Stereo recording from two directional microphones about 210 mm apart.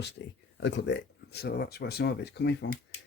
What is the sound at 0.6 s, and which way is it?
Speech, 55° left (ahead or behind).